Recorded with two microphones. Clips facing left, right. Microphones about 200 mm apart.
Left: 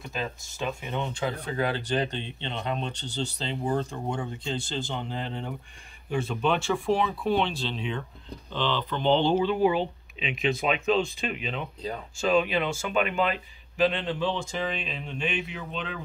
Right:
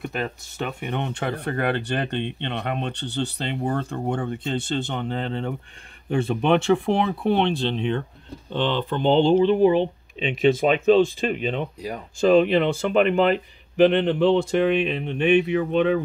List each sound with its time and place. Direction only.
0.0 s speech: 65° right (ahead or behind); by 11.6 s 40° right (ahead or behind)
12.2 s speech: 55° right (ahead or behind)